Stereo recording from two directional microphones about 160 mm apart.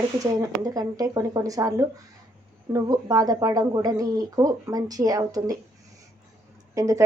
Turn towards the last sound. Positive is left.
turn(degrees=-20)  # may be behind; listen again after turning